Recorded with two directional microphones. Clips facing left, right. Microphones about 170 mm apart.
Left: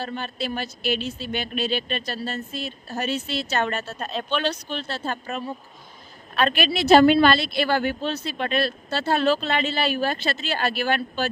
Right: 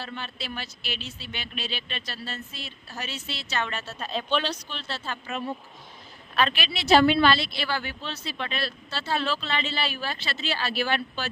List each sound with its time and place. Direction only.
0.0 s speech: 45° left (ahead or behind)
6.4 s speech: 50° left (ahead or behind)